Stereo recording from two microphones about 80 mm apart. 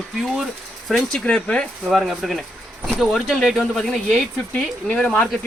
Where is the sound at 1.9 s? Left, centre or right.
Centre.